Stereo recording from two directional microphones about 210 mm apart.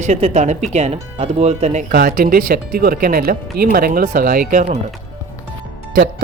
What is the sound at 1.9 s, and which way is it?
Speech, 45° right (ahead or behind).